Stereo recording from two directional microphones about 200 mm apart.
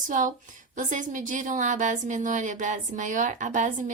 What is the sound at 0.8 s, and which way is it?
A woman's voice, 40° right (ahead or behind).